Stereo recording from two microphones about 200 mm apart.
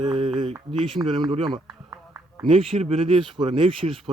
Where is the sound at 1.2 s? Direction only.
25° right (ahead or behind).